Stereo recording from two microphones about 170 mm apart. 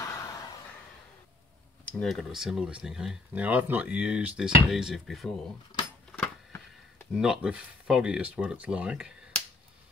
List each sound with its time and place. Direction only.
0.0 s a sound: 20° left (ahead or behind)
1.9 s speech: 5° left (ahead or behind)
7.2 s speech: 5° right (ahead or behind)